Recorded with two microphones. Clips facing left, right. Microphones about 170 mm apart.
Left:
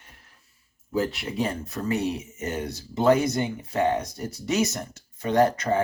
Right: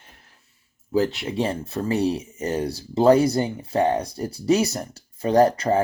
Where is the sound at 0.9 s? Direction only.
35° right (ahead or behind).